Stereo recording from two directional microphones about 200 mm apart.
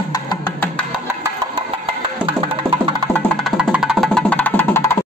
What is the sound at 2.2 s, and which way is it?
Music, 25° right (ahead or behind).